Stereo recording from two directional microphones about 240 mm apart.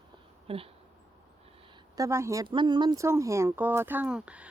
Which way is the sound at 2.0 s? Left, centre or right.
Centre.